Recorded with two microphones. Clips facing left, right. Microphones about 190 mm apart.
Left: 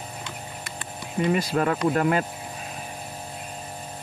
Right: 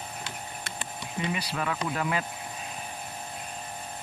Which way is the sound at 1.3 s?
45° left (ahead or behind).